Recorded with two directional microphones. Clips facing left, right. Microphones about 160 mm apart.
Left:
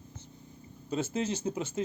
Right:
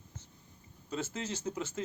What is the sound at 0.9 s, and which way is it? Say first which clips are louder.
Speech: left 6 dB; 20° left (ahead or behind).